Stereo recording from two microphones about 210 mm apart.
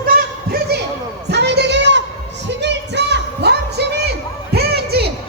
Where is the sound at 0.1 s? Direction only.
45° right (ahead or behind).